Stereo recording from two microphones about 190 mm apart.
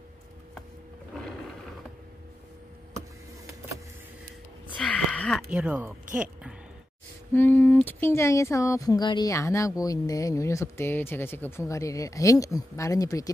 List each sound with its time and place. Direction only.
4.7 s a sound: 5° left (ahead or behind)
5.5 s speech: 5° right (ahead or behind)
7.3 s speech: 10° left (ahead or behind)